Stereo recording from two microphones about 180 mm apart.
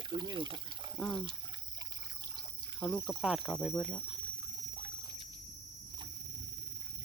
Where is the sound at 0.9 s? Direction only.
Centre (ahead or behind).